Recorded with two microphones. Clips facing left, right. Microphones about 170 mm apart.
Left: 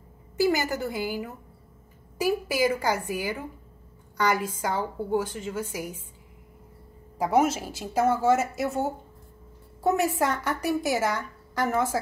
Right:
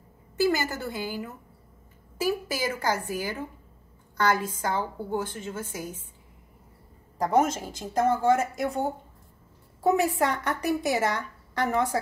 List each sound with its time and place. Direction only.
0.4 s a woman's voice: 15° left (ahead or behind)
7.2 s a woman's voice: 5° left (ahead or behind)